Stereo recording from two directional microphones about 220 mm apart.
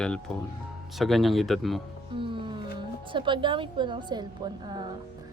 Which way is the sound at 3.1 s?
20° right (ahead or behind).